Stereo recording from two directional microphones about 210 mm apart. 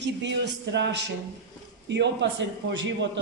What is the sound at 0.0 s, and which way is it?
Speech, 55° right (ahead or behind).